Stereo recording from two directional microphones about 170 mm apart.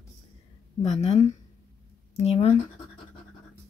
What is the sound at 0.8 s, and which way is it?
Speech, 40° left (ahead or behind).